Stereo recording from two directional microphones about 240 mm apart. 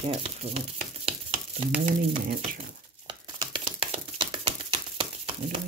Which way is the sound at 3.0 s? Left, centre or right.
Centre.